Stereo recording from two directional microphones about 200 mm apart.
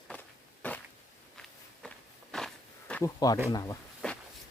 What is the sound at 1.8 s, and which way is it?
Walk, centre (ahead or behind).